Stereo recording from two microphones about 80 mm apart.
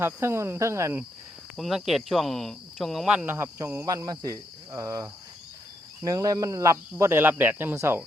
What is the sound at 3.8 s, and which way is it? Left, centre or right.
Cricket, right.